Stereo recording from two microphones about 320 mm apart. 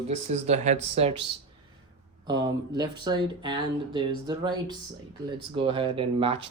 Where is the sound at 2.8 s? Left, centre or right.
Centre.